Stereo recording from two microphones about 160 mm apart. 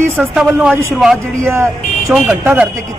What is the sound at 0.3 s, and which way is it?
Speech, 5° right (ahead or behind).